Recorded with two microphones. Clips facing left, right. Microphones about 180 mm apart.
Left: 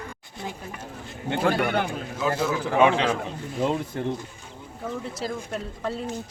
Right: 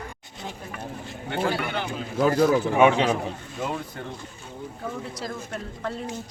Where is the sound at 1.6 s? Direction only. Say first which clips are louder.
Left 5 dB; 55° left (ahead or behind).